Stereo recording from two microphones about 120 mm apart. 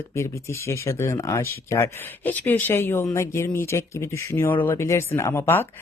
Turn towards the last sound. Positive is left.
turn(degrees=20)  # may be behind; listen again after turning